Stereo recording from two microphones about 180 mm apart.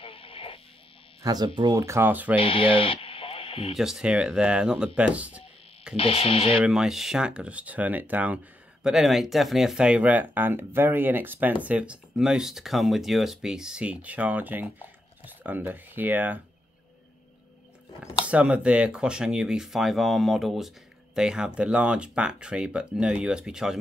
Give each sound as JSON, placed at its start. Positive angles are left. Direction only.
{"t": 0.0, "sound": "radio", "side_deg": 30}
{"t": 1.2, "sound": "speech", "side_deg": -20}
{"t": 2.3, "sound": "speech", "side_deg": 30}
{"t": 3.7, "sound": "speech", "side_deg": 0}
{"t": 5.9, "sound": "speech", "side_deg": 30}
{"t": 6.6, "sound": "speech", "side_deg": 0}
{"t": 18.2, "sound": "speech", "side_deg": -5}